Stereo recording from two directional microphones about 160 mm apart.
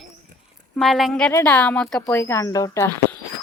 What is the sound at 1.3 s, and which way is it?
Speech, 15° left (ahead or behind).